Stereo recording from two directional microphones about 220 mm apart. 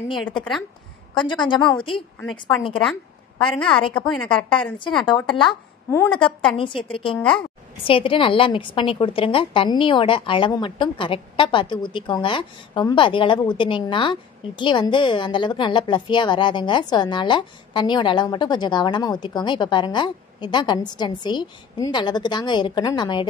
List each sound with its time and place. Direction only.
0.4 s a woman's voice: centre (ahead or behind)
1.1 s a woman's voice: 20° left (ahead or behind)
2.8 s a sound: 5° left (ahead or behind)
3.5 s a woman's voice: 5° left (ahead or behind)
5.0 s a woman's voice: 20° left (ahead or behind)
6.1 s a woman's voice: 25° left (ahead or behind)
7.2 s a woman's voice: 5° left (ahead or behind)
7.8 s a woman's voice: 25° left (ahead or behind)